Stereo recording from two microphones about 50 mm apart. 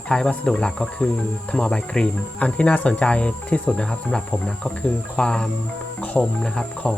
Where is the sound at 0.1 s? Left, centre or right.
Left.